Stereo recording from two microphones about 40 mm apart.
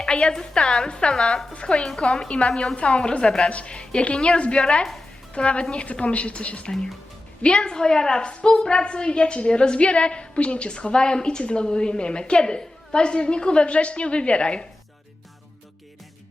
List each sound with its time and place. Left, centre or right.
0.0 s a woman's voice: left
1.1 s a woman's voice: centre; by 6.7 s left
7.4 s a woman's voice: left